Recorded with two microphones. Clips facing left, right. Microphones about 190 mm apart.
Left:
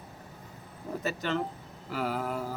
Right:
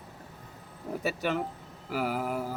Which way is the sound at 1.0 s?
10° right (ahead or behind).